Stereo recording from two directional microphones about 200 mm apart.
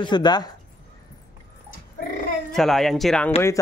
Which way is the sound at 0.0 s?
20° left (ahead or behind).